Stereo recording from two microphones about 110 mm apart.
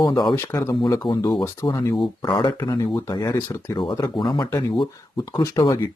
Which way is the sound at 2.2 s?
45° left (ahead or behind).